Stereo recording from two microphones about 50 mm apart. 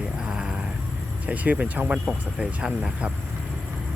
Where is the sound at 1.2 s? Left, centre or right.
Right.